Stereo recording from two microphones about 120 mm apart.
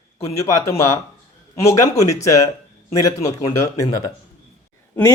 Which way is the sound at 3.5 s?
25° left (ahead or behind).